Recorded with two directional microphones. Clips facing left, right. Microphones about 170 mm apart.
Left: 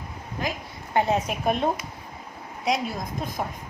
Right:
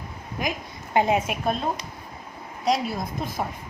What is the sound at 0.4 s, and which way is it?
Speech, 15° right (ahead or behind).